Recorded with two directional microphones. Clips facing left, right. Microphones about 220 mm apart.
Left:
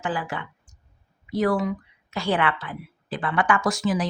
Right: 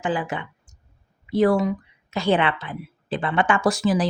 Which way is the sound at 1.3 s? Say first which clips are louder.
Right 4 dB; 25° right (ahead or behind).